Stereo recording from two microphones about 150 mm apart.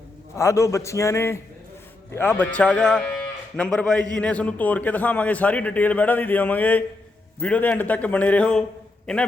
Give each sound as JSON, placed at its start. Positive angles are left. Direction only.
{"t": 0.3, "sound": "a man's voice", "side_deg": 20}